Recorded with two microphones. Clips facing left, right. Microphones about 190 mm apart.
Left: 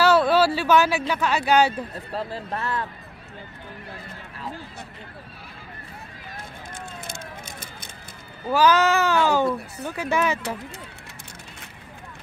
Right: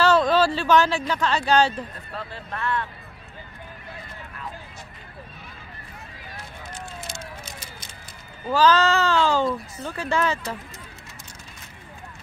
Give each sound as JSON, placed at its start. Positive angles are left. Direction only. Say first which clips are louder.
{"t": 0.0, "sound": "speech", "louder": "left 1 dB", "side_deg": 10}
{"t": 2.1, "sound": "speech", "louder": "left 5 dB", "side_deg": 35}
{"t": 8.5, "sound": "speech", "louder": "even", "side_deg": 10}